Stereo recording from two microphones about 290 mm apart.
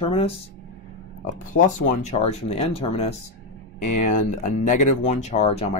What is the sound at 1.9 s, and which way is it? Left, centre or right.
Speech, left.